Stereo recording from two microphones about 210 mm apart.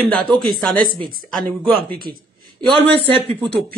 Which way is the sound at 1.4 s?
45° right (ahead or behind).